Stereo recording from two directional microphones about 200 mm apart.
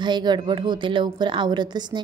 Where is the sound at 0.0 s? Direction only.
20° right (ahead or behind).